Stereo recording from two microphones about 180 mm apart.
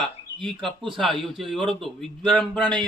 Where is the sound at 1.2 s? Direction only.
Centre (ahead or behind).